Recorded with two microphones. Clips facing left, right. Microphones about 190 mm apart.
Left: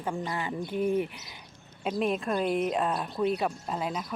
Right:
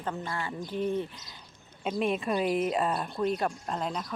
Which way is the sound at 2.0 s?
Centre (ahead or behind).